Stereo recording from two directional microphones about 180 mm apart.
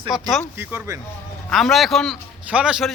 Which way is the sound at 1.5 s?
Centre (ahead or behind).